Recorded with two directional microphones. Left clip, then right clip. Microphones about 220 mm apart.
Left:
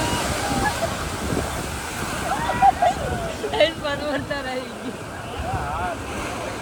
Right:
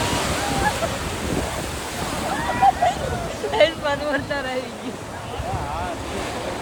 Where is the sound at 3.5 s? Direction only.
Centre (ahead or behind).